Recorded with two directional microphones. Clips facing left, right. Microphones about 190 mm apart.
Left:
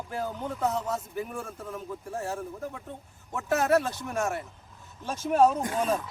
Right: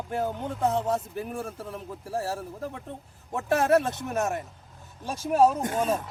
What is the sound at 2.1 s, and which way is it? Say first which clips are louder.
Speech: right 4 dB; 35° right (ahead or behind).